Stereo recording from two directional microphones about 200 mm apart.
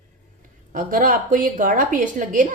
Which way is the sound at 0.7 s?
45° right (ahead or behind).